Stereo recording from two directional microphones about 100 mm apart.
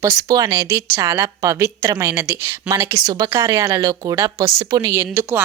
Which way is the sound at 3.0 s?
40° right (ahead or behind).